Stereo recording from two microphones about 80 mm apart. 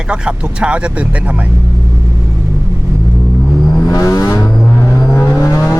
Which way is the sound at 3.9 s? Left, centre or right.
Left.